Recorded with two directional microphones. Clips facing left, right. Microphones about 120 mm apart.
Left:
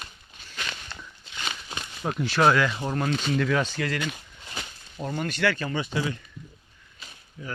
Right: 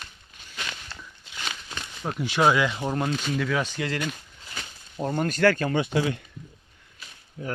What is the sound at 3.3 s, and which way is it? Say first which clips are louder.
Speech: left 3 dB; 5° right (ahead or behind).